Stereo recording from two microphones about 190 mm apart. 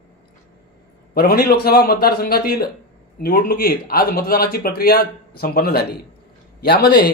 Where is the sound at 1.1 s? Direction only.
55° left (ahead or behind).